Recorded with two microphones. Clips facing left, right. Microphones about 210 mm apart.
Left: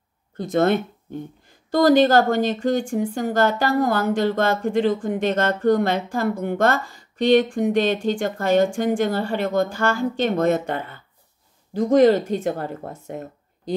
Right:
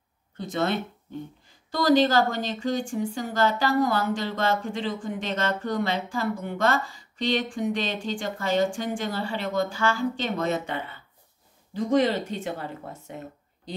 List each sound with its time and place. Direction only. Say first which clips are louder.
0.4 s speech: left 8 dB; 50° left (ahead or behind)